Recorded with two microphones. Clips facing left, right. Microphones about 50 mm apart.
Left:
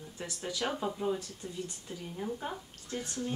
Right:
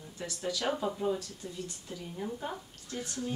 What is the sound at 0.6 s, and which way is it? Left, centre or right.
Speech, centre.